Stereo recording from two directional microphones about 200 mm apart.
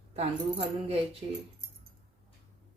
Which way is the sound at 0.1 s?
30° right (ahead or behind).